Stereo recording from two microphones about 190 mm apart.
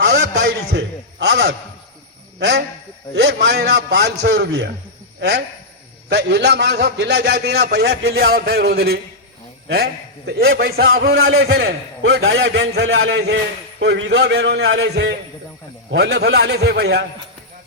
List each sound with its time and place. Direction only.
0.0 s a sound: 60° right (ahead or behind)
2.4 s a man's voice: 60° right (ahead or behind)
6.1 s a man's voice: 65° right (ahead or behind)